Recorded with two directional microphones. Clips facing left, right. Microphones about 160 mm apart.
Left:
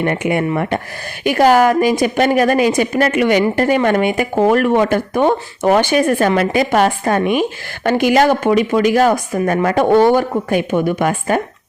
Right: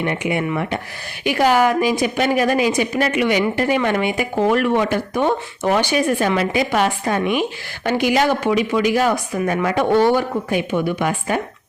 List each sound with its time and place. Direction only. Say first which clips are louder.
0.0 s speech: left 4 dB; 50° left (ahead or behind)